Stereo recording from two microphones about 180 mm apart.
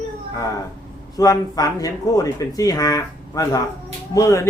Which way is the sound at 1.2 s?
20° left (ahead or behind).